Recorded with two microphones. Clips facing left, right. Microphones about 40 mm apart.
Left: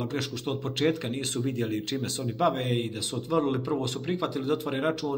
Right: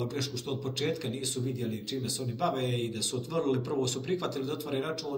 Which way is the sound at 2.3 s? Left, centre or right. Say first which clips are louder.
Left 5 dB; left.